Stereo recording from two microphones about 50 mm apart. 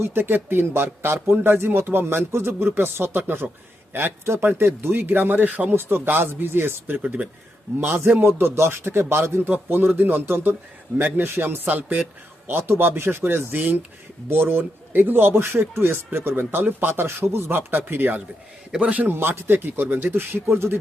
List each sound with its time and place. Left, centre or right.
0.0 s a man's voice: right
7.0 s a man's voice: right
7.8 s a man's voice: right
9.5 s a man's voice: right
11.6 s a man's voice: right
12.5 s a man's voice: right
18.7 s a man's voice: right
19.1 s a man's voice: right